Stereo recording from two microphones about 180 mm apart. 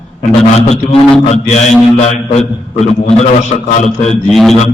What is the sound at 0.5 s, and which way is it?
A man's voice, 35° left (ahead or behind).